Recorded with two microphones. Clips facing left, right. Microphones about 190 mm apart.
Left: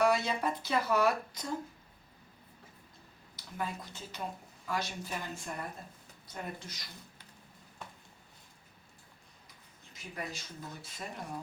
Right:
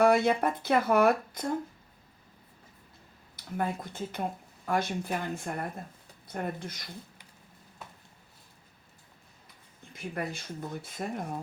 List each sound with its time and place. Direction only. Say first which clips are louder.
0.0 s speech: right 6 dB; 55° right (ahead or behind)
3.3 s speech: right 6 dB; 55° right (ahead or behind)
9.9 s speech: right 7 dB; 55° right (ahead or behind)